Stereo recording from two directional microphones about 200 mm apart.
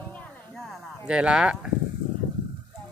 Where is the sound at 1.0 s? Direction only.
5° right (ahead or behind).